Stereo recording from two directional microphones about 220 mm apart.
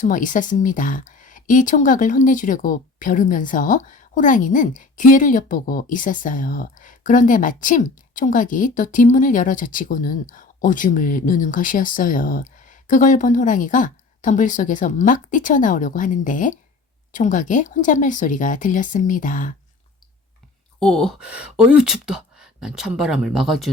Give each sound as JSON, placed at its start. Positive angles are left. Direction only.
{"t": 0.0, "sound": "speech", "side_deg": 35}
{"t": 20.7, "sound": "speech", "side_deg": 5}